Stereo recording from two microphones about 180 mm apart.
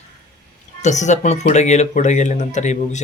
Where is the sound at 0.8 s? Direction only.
40° left (ahead or behind).